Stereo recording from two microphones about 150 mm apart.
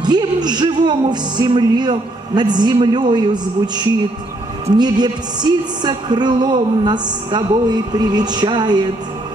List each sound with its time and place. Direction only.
0.0 s speech: 30° right (ahead or behind)
0.8 s music: 30° right (ahead or behind)